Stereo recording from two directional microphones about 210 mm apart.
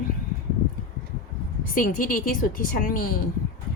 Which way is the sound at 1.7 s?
40° left (ahead or behind).